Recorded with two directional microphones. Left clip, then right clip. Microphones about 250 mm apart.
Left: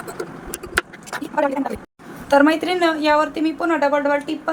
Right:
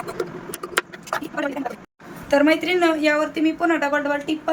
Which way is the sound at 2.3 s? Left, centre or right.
Centre.